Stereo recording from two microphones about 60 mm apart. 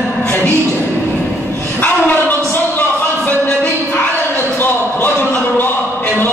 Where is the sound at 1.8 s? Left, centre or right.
Left.